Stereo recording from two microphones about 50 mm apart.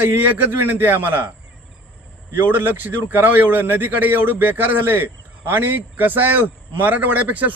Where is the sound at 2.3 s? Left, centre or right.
Right.